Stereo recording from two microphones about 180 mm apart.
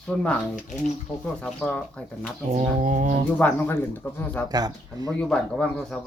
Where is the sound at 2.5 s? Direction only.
40° right (ahead or behind).